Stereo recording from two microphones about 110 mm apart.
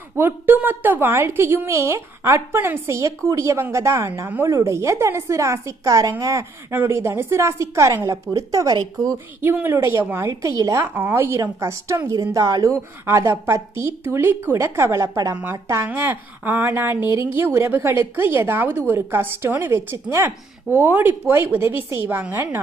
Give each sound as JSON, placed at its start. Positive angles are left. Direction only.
{"t": 0.2, "sound": "a woman's voice", "side_deg": -20}
{"t": 9.4, "sound": "a woman's voice", "side_deg": -20}